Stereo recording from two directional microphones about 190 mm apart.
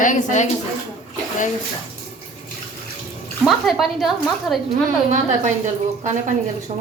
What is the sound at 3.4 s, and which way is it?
A woman's voice, centre (ahead or behind).